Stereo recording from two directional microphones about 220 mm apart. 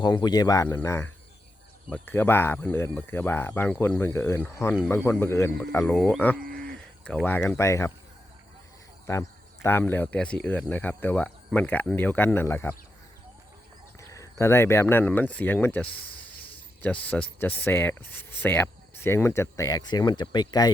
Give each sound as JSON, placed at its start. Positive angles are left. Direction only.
{"t": 0.0, "sound": "speech", "side_deg": 20}
{"t": 9.0, "sound": "speech", "side_deg": 15}
{"t": 14.0, "sound": "speech", "side_deg": 15}